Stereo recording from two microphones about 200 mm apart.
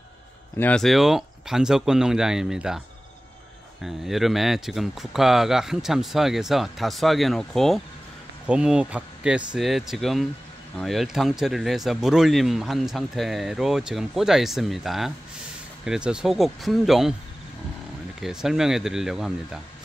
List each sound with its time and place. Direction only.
0.6 s speech: 5° left (ahead or behind)
3.8 s speech: centre (ahead or behind)
18.2 s speech: 5° right (ahead or behind)